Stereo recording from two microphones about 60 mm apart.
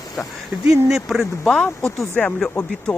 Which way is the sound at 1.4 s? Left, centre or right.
Centre.